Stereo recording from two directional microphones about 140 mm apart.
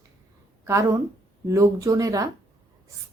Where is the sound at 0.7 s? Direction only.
20° right (ahead or behind).